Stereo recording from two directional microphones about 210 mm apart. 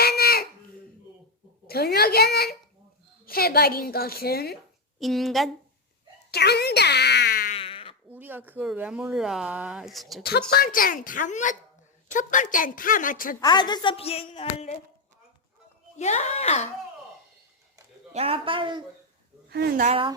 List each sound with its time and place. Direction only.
0.0 s a sound: 45° left (ahead or behind)
1.6 s a woman's voice: 50° left (ahead or behind)
4.9 s speech: centre (ahead or behind)
6.3 s speech: 50° left (ahead or behind)
7.5 s a sound: 25° left (ahead or behind)
8.1 s speech: 10° right (ahead or behind)
10.5 s a woman's voice: 45° left (ahead or behind)
13.4 s a woman's voice: 20° left (ahead or behind)
16.0 s a woman's voice: 30° left (ahead or behind)
18.1 s speech: 30° right (ahead or behind)
19.5 s speech: 50° right (ahead or behind)
19.8 s speech: 25° right (ahead or behind)